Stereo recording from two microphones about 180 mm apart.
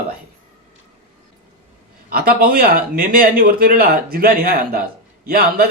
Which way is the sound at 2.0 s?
55° right (ahead or behind).